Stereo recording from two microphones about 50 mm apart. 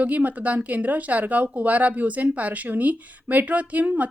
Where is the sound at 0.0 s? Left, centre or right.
Right.